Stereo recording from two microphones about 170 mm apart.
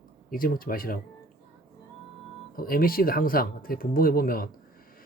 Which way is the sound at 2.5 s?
60° left (ahead or behind).